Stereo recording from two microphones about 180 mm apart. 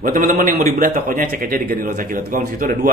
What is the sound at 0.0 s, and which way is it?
A man's voice, 50° right (ahead or behind).